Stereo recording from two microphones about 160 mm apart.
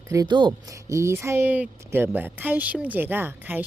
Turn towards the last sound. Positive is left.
turn(degrees=-10)  # may be behind; listen again after turning